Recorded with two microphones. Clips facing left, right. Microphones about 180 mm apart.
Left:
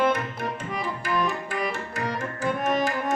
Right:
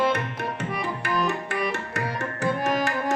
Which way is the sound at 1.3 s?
70° right (ahead or behind).